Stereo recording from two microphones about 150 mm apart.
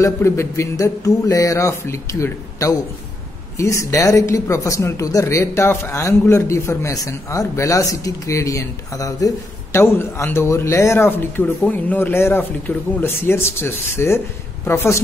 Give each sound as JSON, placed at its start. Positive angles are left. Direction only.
{"t": 0.0, "sound": "speech", "side_deg": 20}